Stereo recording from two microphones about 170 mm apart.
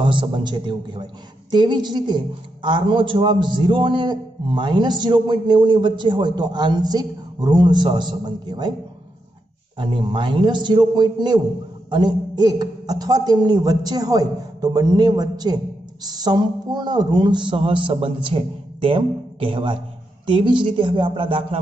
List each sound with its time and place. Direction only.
0.0 s a man's voice: 30° right (ahead or behind)
9.8 s a man's voice: 30° right (ahead or behind)